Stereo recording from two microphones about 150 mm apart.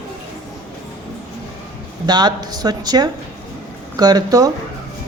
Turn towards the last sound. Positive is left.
turn(degrees=-25)  # may be behind; listen again after turning